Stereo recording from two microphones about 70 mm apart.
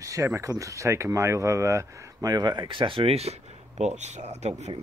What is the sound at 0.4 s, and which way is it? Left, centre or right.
Speech, right.